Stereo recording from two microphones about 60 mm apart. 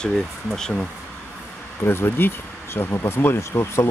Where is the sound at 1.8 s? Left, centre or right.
Left.